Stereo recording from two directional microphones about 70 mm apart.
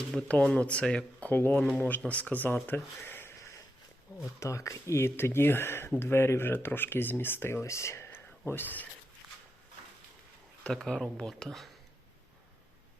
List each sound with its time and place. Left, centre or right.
0.3 s speech: centre
1.3 s speech: left
4.4 s speech: left
10.8 s speech: centre